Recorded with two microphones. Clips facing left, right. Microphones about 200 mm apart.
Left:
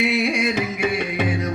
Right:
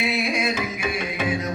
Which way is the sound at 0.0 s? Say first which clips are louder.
Left 3 dB; 65° left (ahead or behind).